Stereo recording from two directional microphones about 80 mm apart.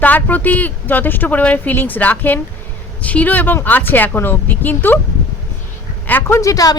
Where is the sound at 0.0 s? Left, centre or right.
Left.